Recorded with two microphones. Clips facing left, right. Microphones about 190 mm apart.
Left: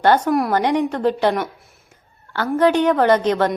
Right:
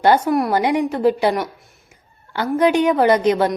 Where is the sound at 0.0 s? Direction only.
5° right (ahead or behind).